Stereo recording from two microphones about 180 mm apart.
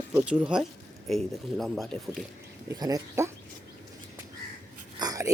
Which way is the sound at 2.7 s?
20° right (ahead or behind).